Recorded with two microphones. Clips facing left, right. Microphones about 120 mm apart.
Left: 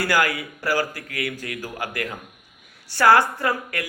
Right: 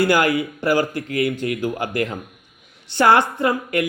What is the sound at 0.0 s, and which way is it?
Speech, 25° right (ahead or behind).